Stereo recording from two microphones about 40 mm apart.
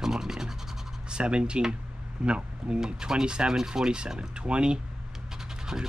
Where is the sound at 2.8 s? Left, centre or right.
Centre.